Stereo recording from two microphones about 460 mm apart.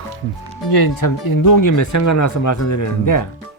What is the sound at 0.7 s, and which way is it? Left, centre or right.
Speech, left.